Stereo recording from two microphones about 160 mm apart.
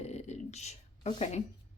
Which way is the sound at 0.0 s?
45° left (ahead or behind).